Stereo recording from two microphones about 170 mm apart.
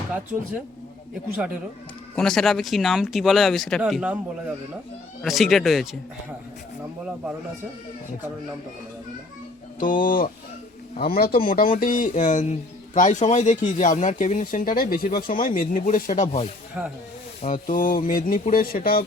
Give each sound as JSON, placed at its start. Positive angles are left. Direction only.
{"t": 2.1, "sound": "speech", "side_deg": 5}
{"t": 5.2, "sound": "speech", "side_deg": 0}
{"t": 9.8, "sound": "a man's voice", "side_deg": 55}